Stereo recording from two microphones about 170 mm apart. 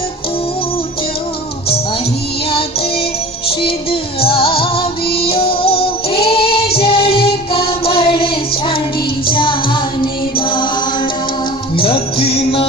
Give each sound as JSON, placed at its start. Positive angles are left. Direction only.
{"t": 4.2, "sound": "music", "side_deg": 35}
{"t": 6.2, "sound": "child singing", "side_deg": 35}
{"t": 6.7, "sound": "music", "side_deg": 35}
{"t": 11.8, "sound": "music", "side_deg": 30}